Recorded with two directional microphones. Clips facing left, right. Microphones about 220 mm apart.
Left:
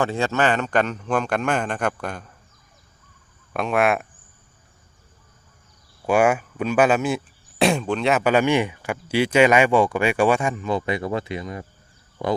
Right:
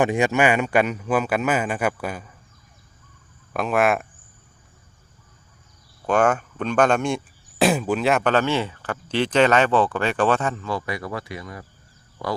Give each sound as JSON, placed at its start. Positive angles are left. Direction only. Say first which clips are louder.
{"t": 0.0, "sound": "speech", "louder": "right 2 dB", "side_deg": -15}
{"t": 3.5, "sound": "speech", "louder": "even", "side_deg": 0}
{"t": 6.1, "sound": "speech", "louder": "left 1 dB", "side_deg": 10}